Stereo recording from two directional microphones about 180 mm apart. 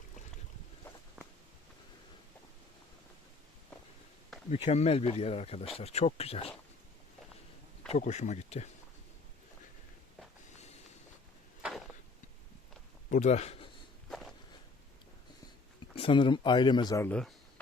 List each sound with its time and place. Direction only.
4.4 s speech: 35° left (ahead or behind)
7.9 s speech: 40° left (ahead or behind)
11.6 s a sound: centre (ahead or behind)
13.1 s speech: 40° left (ahead or behind)
14.1 s walk: centre (ahead or behind)
16.0 s speech: 30° left (ahead or behind)
17.1 s speech: 5° left (ahead or behind)